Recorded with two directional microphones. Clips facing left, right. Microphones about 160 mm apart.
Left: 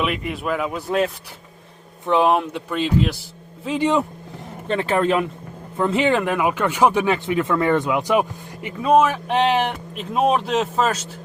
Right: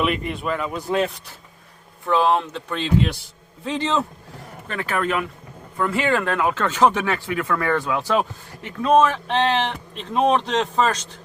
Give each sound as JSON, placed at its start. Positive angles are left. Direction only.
{"t": 0.0, "sound": "speech", "side_deg": 0}
{"t": 2.0, "sound": "speech", "side_deg": 20}
{"t": 4.7, "sound": "speech", "side_deg": 25}